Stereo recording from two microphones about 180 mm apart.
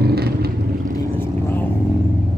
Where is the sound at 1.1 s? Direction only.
10° left (ahead or behind).